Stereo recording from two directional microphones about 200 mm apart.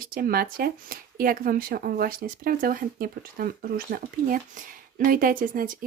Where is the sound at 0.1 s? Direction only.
45° right (ahead or behind).